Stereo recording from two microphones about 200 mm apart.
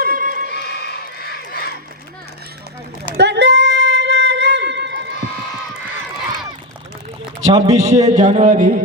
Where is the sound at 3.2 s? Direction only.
60° right (ahead or behind).